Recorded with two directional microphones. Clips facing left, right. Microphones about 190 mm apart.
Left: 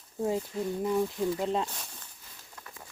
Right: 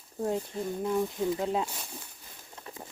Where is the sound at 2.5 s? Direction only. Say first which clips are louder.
Right 5 dB; 25° right (ahead or behind).